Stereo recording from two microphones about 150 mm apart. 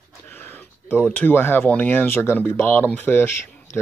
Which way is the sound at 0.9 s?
10° left (ahead or behind).